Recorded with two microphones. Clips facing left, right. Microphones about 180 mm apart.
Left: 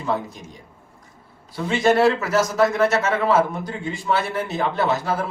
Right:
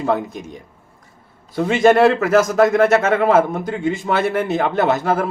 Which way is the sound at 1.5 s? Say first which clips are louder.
Right 5 dB; 50° right (ahead or behind).